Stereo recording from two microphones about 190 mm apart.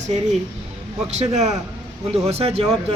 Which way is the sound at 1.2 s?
35° right (ahead or behind).